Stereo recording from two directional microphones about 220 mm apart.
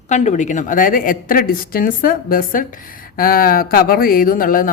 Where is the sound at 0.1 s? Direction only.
35° left (ahead or behind).